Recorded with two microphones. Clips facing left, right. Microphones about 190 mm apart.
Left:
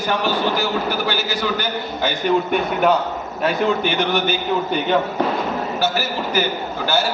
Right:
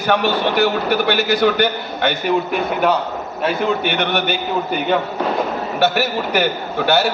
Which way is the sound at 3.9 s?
65° right (ahead or behind).